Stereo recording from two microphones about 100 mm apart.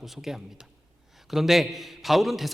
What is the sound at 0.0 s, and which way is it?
A man's voice, 5° right (ahead or behind).